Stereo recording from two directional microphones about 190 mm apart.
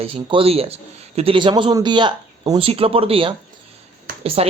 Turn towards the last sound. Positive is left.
turn(degrees=-35)  # may be behind; listen again after turning